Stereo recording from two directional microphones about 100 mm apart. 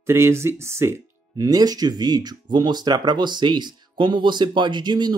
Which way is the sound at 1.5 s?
40° right (ahead or behind).